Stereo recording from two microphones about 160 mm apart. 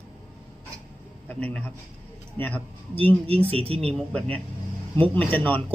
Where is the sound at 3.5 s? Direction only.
35° right (ahead or behind).